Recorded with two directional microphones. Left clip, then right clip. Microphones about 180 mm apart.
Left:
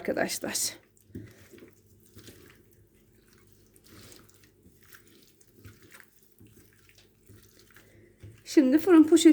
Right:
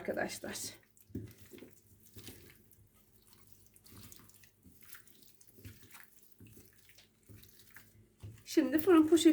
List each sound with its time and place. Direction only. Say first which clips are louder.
0.0 s speech: left 8 dB; 55° left (ahead or behind)
8.4 s speech: left 7 dB; 55° left (ahead or behind)